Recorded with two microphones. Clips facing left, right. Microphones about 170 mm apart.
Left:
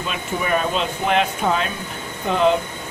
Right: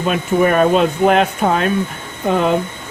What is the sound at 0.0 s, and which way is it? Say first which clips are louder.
Speech: right 10 dB; 50° right (ahead or behind).